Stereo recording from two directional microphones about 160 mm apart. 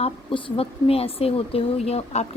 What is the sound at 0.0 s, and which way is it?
Speech, 30° left (ahead or behind).